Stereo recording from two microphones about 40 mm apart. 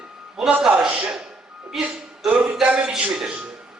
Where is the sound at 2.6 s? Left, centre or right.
Right.